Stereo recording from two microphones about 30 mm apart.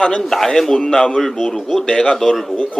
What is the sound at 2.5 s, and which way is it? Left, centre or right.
Speech, left.